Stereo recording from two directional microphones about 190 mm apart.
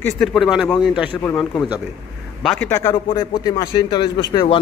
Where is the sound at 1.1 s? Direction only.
15° left (ahead or behind).